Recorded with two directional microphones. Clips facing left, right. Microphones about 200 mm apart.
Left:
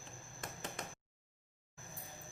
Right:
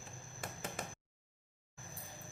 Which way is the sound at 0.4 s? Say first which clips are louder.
Right 2 dB; 5° right (ahead or behind).